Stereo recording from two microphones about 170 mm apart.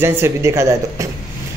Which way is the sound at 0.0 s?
15° right (ahead or behind).